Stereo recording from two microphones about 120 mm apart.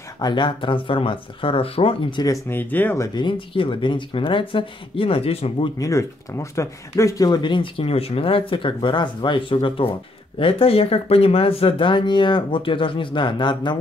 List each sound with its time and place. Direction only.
0.2 s speech: 40° left (ahead or behind)
2.2 s speech: 25° left (ahead or behind)
2.7 s speech: 15° left (ahead or behind)
3.2 s speech: 45° left (ahead or behind)
5.8 s speech: 25° left (ahead or behind)